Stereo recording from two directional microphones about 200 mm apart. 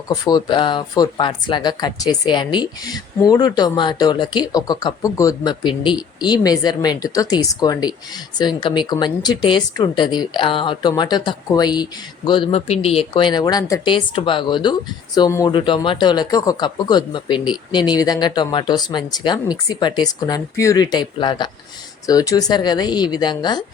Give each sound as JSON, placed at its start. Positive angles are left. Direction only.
{"t": 0.1, "sound": "speech", "side_deg": 20}